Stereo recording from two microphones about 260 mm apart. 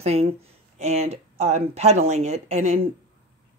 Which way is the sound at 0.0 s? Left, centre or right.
Right.